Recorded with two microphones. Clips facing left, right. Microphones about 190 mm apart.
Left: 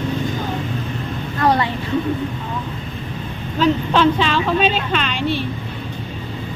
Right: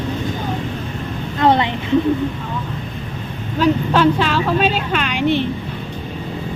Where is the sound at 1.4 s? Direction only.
20° right (ahead or behind).